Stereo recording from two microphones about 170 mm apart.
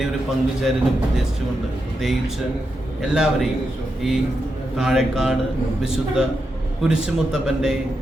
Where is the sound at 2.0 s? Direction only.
Centre (ahead or behind).